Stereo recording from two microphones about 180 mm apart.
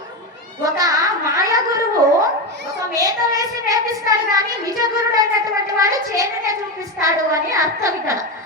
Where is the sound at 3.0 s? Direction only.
20° right (ahead or behind).